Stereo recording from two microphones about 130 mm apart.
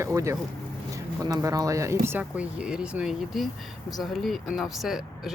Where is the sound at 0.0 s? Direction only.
20° right (ahead or behind).